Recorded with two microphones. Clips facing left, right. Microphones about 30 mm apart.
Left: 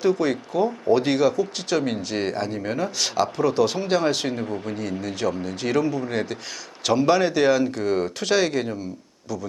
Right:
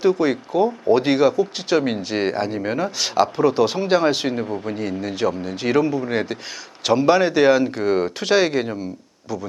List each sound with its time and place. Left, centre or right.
0.0 s speech: centre